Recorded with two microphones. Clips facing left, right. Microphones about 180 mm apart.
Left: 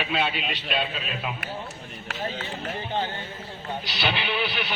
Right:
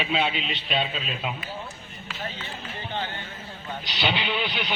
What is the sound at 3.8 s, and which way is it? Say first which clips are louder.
Speech: right 2 dB; 20° right (ahead or behind).